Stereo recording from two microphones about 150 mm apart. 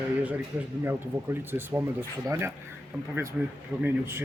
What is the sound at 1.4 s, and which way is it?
Speech, 15° right (ahead or behind).